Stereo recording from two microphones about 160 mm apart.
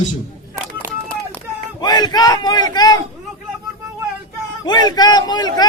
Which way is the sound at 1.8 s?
25° left (ahead or behind).